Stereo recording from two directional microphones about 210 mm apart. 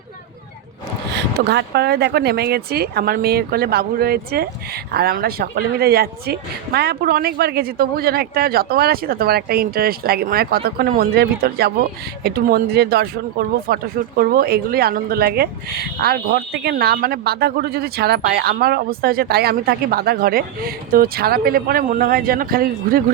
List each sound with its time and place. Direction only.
1.1 s speech: 50° right (ahead or behind)